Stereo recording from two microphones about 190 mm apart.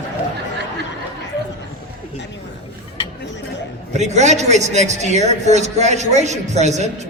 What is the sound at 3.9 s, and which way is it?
Speech, 35° right (ahead or behind).